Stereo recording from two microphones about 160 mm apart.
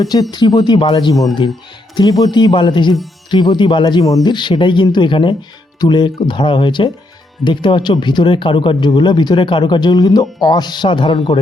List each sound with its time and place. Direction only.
0.0 s speech: 25° left (ahead or behind)